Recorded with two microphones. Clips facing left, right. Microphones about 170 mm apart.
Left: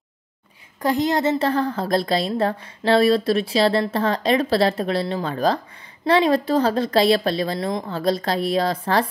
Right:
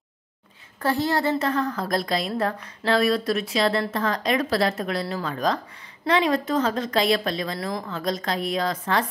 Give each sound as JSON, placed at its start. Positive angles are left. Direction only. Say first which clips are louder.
{"t": 0.7, "sound": "a woman's voice", "louder": "left 3 dB", "side_deg": 15}
{"t": 1.4, "sound": "a woman's voice", "louder": "left 3 dB", "side_deg": 30}